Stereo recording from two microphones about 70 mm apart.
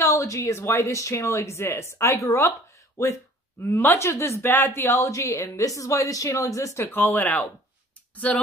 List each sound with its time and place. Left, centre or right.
0.0 s a woman's voice: left
4.4 s a woman's voice: left
6.9 s speech: left